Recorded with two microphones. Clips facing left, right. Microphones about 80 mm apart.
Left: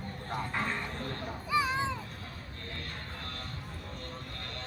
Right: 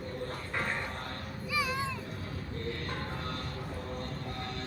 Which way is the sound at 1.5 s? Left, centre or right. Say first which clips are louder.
Left 3 dB; left.